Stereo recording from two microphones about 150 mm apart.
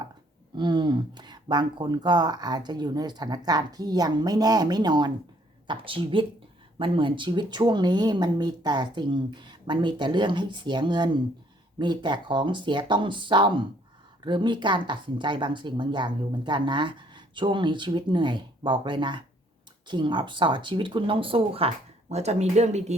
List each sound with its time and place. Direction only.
0.5 s speech: 30° right (ahead or behind); by 23.0 s 50° right (ahead or behind)